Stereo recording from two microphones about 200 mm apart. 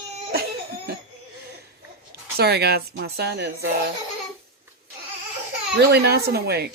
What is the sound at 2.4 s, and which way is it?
Speech, 55° right (ahead or behind).